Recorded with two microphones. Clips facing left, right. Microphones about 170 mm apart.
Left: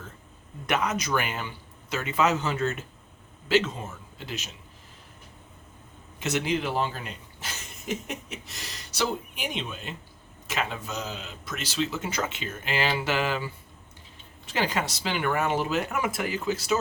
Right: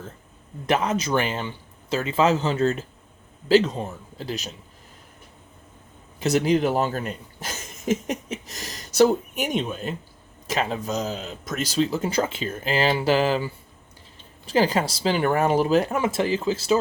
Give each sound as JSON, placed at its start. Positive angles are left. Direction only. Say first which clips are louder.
{"t": 0.7, "sound": "a man's voice", "louder": "right 4 dB", "side_deg": -30}
{"t": 6.1, "sound": "speech", "louder": "right 7 dB", "side_deg": -35}